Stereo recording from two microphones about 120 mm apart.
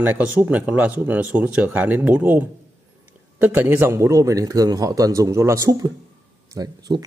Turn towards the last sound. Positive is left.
turn(degrees=-35)  # may be behind; listen again after turning